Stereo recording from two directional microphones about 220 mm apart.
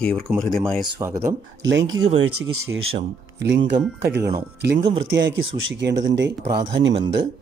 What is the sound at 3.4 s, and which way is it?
Speech, 50° right (ahead or behind).